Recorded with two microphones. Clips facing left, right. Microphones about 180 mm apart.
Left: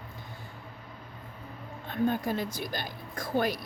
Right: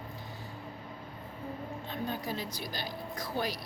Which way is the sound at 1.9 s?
55° left (ahead or behind).